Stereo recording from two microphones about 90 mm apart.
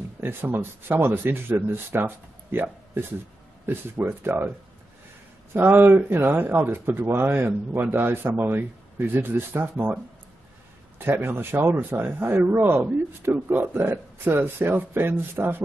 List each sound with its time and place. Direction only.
0.2 s speech: 25° right (ahead or behind)
5.5 s speech: 25° right (ahead or behind)
11.0 s speech: 25° right (ahead or behind)